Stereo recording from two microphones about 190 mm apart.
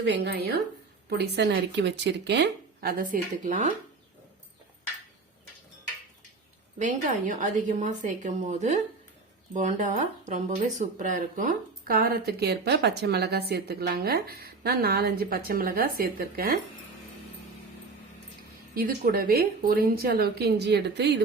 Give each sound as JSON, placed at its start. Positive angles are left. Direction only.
{"t": 0.0, "sound": "speech", "side_deg": -60}
{"t": 6.7, "sound": "a woman's voice", "side_deg": -40}
{"t": 18.7, "sound": "speech", "side_deg": -50}